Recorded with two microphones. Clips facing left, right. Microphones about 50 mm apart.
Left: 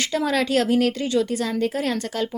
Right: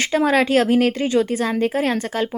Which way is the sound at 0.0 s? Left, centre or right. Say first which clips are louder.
Right 5 dB; right.